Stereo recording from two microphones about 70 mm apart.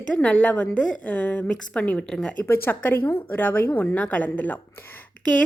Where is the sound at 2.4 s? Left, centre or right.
Left.